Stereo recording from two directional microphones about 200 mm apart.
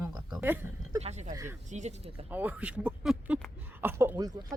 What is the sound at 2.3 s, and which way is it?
A woman's voice, 10° right (ahead or behind).